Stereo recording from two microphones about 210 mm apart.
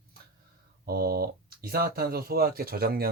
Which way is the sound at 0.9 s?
45° right (ahead or behind).